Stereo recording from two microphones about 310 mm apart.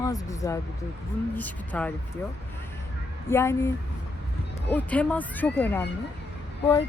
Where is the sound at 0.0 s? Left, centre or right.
Centre.